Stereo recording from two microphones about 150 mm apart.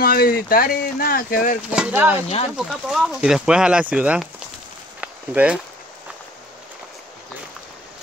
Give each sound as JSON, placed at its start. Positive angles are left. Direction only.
{"t": 0.0, "sound": "speech", "side_deg": 90}
{"t": 1.7, "sound": "speech", "side_deg": -10}
{"t": 5.0, "sound": "a sound", "side_deg": -10}